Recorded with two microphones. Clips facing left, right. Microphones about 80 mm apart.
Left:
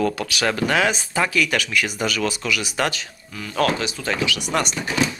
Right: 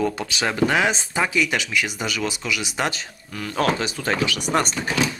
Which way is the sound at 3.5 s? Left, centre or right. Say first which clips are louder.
Left 1 dB; right.